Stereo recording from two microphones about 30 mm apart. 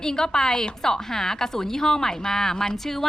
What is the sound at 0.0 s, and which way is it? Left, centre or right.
Speech, left.